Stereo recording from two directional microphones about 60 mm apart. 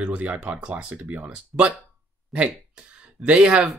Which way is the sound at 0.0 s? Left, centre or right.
Right.